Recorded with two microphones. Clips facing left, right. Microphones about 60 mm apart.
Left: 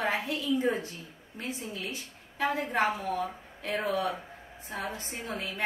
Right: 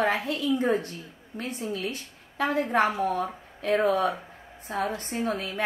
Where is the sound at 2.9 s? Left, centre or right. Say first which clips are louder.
Right 5 dB; right.